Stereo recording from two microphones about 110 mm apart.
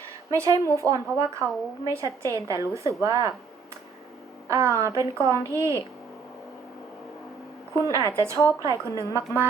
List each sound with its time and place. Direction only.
0.3 s a woman's voice: 30° right (ahead or behind)
4.4 s a woman's voice: 25° right (ahead or behind)
7.9 s a woman's voice: 30° right (ahead or behind)